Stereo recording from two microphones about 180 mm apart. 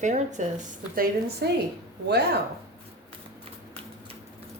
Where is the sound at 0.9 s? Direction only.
55° right (ahead or behind).